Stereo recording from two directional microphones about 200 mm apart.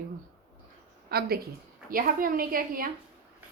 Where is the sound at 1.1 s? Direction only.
50° right (ahead or behind).